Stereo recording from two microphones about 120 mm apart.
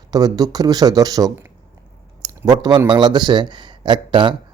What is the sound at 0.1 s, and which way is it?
A man's voice, 35° right (ahead or behind).